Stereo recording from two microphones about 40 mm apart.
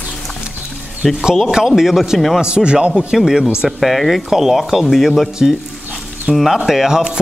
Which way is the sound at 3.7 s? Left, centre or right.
Centre.